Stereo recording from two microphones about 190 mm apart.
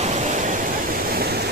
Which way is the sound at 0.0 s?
40° right (ahead or behind).